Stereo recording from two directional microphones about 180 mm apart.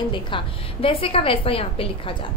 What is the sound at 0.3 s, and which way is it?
A woman's voice, 30° left (ahead or behind).